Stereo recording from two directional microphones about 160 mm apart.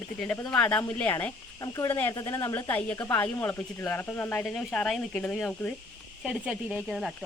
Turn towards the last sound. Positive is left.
turn(degrees=0)  # may be behind; listen again after turning